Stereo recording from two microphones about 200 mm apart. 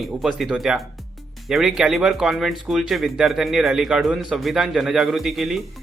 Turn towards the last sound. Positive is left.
turn(degrees=0)  # may be behind; listen again after turning